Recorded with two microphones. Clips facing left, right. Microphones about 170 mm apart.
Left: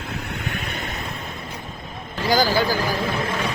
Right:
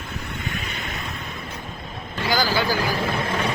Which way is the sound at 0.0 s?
85° left.